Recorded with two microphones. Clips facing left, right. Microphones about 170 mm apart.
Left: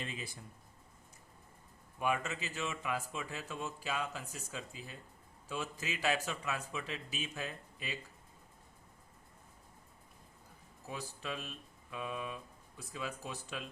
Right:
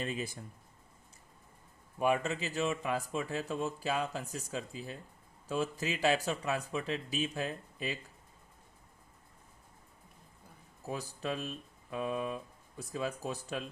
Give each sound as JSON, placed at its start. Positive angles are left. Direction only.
{"t": 0.0, "sound": "speech", "side_deg": -45}
{"t": 2.0, "sound": "speech", "side_deg": -35}
{"t": 10.8, "sound": "speech", "side_deg": -40}